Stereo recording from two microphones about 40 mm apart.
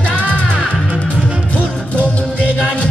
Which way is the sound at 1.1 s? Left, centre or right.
Left.